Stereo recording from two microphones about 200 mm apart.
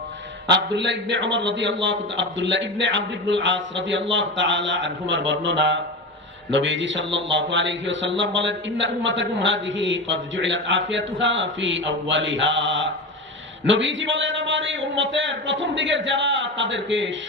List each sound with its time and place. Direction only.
0.4 s a man's voice: 60° right (ahead or behind)